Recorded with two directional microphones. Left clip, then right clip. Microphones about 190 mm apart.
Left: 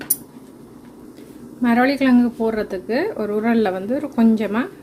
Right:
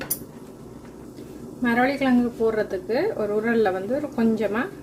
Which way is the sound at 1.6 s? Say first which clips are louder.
Left 4 dB; 40° left (ahead or behind).